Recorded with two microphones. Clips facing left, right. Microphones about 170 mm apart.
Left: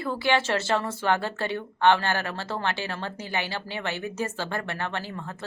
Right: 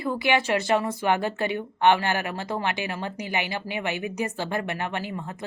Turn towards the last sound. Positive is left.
turn(degrees=-15)  # may be behind; listen again after turning